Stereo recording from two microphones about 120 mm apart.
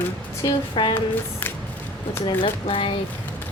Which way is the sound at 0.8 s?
45° left (ahead or behind).